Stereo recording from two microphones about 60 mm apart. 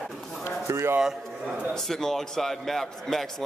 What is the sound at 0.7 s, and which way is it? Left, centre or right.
Speech, right.